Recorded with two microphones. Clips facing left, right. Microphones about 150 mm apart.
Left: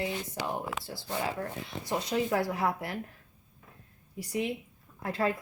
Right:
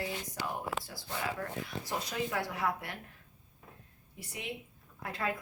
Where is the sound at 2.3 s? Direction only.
35° left (ahead or behind).